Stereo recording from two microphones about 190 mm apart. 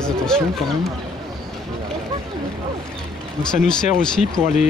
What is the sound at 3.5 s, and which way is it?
Speech, 5° left (ahead or behind).